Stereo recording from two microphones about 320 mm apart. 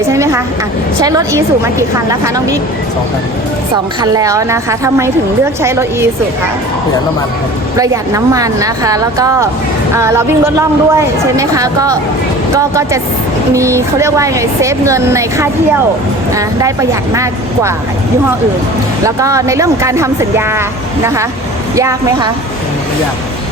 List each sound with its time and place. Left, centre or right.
0.1 s a sound: centre
1.0 s speech: centre
4.0 s speech: centre
7.8 s speech: centre
19.0 s speech: centre